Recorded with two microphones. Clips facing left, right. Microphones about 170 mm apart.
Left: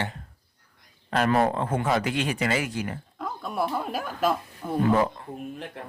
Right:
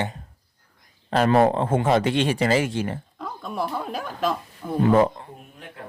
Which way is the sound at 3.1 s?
Centre (ahead or behind).